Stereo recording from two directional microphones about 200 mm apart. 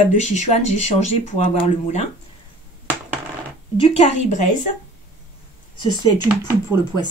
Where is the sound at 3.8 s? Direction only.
30° left (ahead or behind).